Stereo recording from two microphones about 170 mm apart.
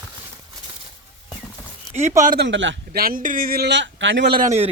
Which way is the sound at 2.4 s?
90° right.